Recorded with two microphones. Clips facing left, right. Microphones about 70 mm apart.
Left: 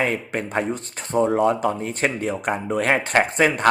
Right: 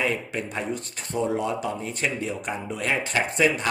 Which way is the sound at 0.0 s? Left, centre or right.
Left.